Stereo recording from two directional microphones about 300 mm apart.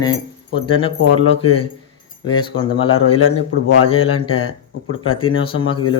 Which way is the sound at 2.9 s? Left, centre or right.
Left.